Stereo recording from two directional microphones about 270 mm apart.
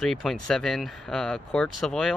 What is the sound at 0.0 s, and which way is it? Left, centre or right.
Speech, centre.